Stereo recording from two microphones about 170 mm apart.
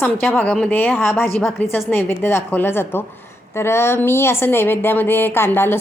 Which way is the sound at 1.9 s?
10° left (ahead or behind).